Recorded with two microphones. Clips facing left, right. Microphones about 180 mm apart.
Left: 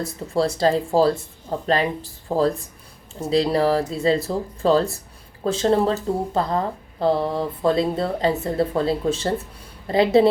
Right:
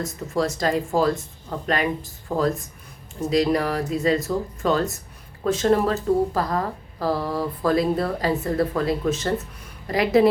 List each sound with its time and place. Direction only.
0.0 s speech: 30° left (ahead or behind)